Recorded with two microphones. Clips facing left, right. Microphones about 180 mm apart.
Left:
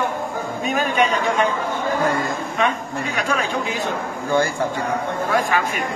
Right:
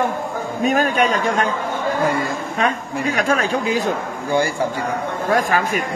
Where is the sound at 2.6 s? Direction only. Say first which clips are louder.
Right 2 dB; 40° right (ahead or behind).